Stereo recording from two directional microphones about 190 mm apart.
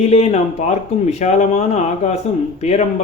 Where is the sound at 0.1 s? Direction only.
35° left (ahead or behind).